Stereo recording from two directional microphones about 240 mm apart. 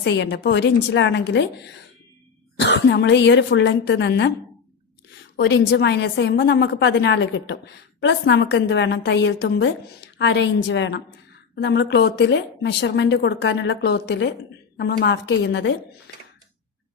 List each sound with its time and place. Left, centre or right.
0.0 s a woman's voice: left
5.4 s a woman's voice: left